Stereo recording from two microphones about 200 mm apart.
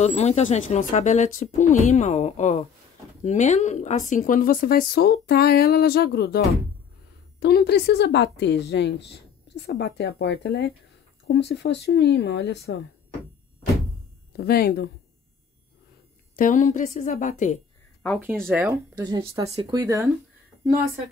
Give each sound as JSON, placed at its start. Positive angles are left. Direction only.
{"t": 0.0, "sound": "a woman's voice", "side_deg": 35}
{"t": 14.3, "sound": "speech", "side_deg": 50}
{"t": 16.3, "sound": "speech", "side_deg": 40}
{"t": 18.5, "sound": "speech", "side_deg": -15}